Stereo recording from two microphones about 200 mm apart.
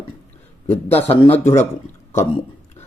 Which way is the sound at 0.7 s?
30° left (ahead or behind).